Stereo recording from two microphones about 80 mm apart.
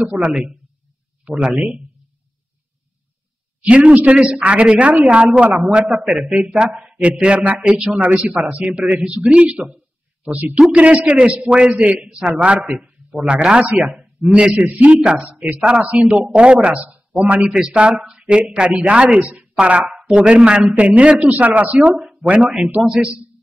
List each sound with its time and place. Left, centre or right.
0.2 s a man's voice: centre
3.6 s a man's voice: centre